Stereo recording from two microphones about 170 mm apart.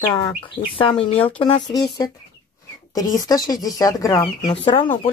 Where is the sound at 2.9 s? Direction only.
20° left (ahead or behind).